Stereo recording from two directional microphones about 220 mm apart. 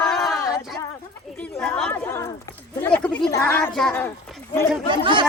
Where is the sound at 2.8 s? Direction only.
5° left (ahead or behind).